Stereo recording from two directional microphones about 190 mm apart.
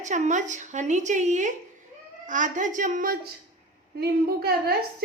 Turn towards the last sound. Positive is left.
turn(degrees=-55)  # may be behind; listen again after turning